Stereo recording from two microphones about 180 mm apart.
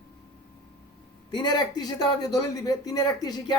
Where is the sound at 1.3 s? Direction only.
25° left (ahead or behind).